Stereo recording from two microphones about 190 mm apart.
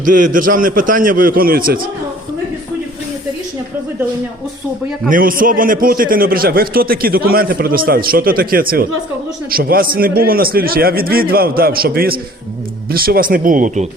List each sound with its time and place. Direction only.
0.0 s a man's voice: 45° right (ahead or behind)
5.0 s a man's voice: 45° right (ahead or behind)